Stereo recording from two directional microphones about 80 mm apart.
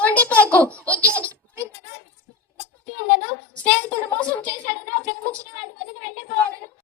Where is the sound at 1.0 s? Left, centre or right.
Right.